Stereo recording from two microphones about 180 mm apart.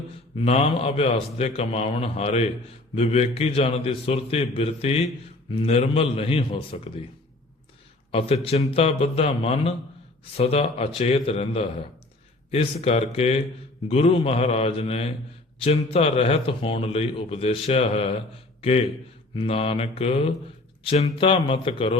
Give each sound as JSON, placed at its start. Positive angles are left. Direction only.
{"t": 0.3, "sound": "speech", "side_deg": 35}
{"t": 8.1, "sound": "speech", "side_deg": 35}